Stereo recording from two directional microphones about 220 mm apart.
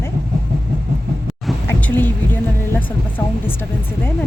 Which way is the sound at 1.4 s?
10° left (ahead or behind).